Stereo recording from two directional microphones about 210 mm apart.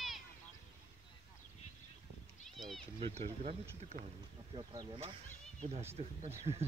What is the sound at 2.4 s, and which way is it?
Cat, centre (ahead or behind).